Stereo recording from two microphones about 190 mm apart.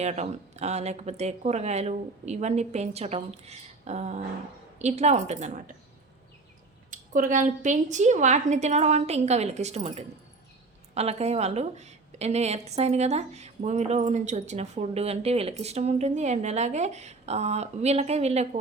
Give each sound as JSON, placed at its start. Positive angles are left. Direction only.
{"t": 0.0, "sound": "a woman's voice", "side_deg": -35}
{"t": 6.9, "sound": "a woman's voice", "side_deg": -45}